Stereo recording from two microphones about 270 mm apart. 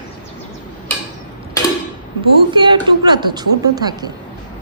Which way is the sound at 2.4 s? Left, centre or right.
Centre.